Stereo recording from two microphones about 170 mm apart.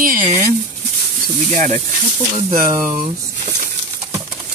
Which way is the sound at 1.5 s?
45° right (ahead or behind).